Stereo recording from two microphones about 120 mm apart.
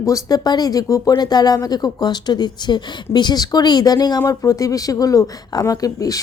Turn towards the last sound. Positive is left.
turn(degrees=30)  # may be behind; listen again after turning